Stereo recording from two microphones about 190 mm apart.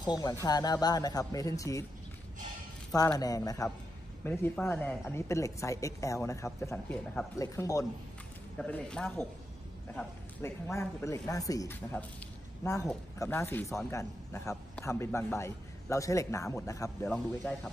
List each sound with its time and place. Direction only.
0.0 s speech: 20° left (ahead or behind)
3.2 s a woman's voice: 20° left (ahead or behind)
8.5 s a woman's voice: 5° left (ahead or behind)